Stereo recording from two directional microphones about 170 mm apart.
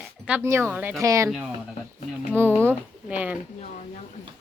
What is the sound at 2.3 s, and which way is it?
A woman's voice, 10° right (ahead or behind).